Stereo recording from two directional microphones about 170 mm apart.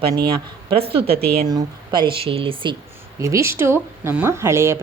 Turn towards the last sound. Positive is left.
turn(degrees=-15)  # may be behind; listen again after turning